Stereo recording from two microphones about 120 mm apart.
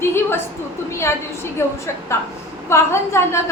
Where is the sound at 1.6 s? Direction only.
20° left (ahead or behind).